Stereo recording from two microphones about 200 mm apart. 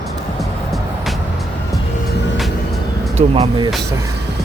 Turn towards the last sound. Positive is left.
turn(degrees=-30)  # may be behind; listen again after turning